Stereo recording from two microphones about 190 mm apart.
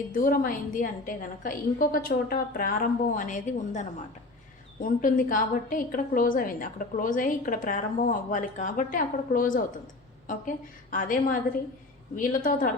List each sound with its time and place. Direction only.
0.1 s a woman's voice: 45° left (ahead or behind)